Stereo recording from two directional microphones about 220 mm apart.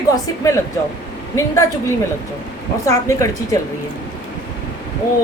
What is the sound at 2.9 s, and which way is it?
Speech, 15° left (ahead or behind).